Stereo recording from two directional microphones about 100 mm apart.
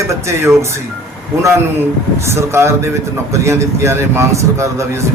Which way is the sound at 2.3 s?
25° right (ahead or behind).